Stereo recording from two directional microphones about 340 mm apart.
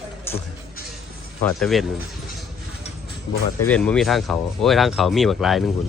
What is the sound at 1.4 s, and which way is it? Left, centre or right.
Speech, centre.